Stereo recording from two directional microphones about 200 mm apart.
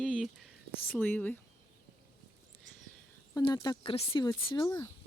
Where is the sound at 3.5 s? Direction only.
25° left (ahead or behind).